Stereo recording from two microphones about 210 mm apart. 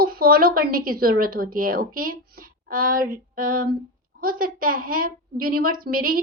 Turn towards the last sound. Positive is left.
turn(degrees=-45)  # may be behind; listen again after turning